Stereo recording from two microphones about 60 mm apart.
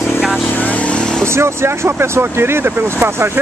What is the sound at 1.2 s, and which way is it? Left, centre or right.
Speech, right.